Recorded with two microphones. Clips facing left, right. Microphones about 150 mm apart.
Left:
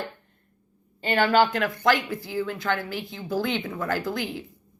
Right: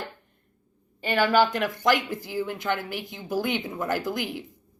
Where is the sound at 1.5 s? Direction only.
15° right (ahead or behind).